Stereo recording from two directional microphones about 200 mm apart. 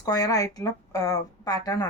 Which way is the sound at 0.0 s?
20° left (ahead or behind).